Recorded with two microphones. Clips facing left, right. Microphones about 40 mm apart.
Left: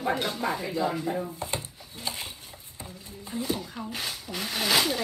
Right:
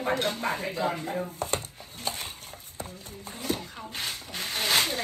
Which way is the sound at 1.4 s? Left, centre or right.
Right.